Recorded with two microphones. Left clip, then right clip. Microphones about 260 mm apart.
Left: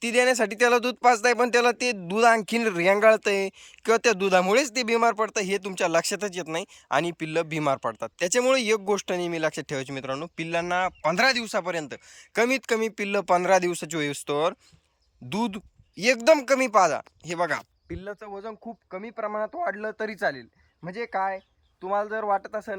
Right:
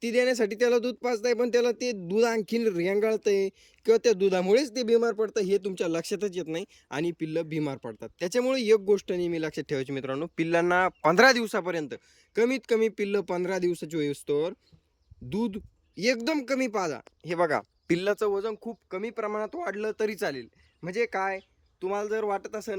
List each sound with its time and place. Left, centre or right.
0.0 s speech: centre
17.3 s speech: centre